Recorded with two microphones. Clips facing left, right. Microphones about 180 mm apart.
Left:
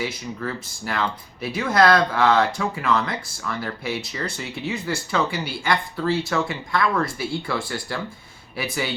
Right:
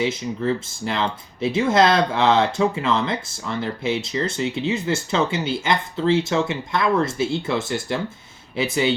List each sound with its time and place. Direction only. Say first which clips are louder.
0.0 s speech: right 6 dB; 25° right (ahead or behind)